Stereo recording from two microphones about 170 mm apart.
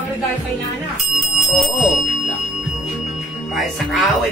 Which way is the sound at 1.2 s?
Centre (ahead or behind).